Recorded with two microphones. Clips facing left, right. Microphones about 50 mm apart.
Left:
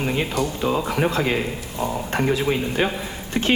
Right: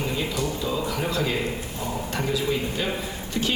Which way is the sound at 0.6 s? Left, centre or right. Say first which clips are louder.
Left 5 dB; left.